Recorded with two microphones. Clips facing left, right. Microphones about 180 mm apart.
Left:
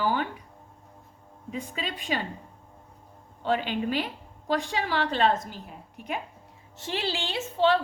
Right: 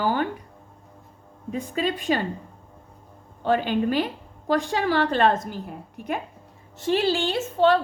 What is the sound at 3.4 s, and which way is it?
A woman's voice, 45° right (ahead or behind).